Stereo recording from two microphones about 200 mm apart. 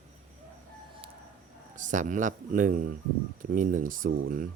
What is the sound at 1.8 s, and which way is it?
Speech, 40° right (ahead or behind).